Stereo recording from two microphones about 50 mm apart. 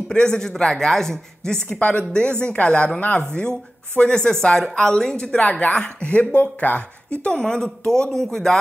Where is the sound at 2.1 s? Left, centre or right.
Centre.